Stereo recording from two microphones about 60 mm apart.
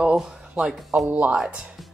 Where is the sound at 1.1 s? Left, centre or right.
Right.